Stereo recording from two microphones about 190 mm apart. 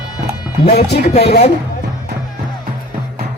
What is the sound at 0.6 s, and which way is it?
Speech, 35° left (ahead or behind).